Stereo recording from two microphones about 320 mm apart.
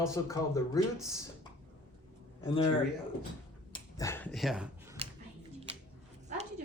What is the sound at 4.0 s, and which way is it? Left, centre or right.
Speech, centre.